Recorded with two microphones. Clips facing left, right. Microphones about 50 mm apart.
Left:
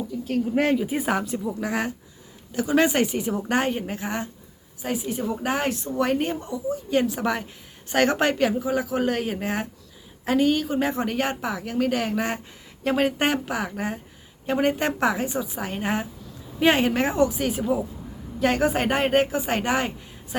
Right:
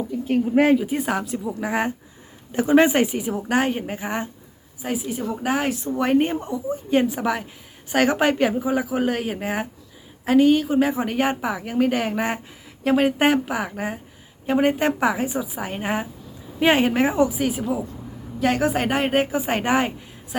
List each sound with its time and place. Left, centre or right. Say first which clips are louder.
0.1 s speech: right 5 dB; right
0.9 s speech: right 1 dB; centre
1.6 s a woman's voice: right 3 dB; centre
7.2 s a woman's voice: right 2 dB; centre
19.4 s a woman's voice: right 3 dB; centre